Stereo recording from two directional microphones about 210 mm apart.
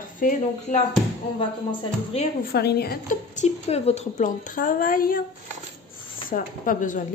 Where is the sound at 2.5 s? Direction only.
50° left (ahead or behind).